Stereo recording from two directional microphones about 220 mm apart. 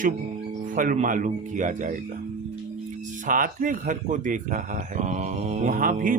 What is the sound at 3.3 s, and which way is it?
Speech, 35° right (ahead or behind).